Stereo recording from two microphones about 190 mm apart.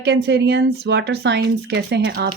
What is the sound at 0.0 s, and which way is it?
Speech, 60° right (ahead or behind).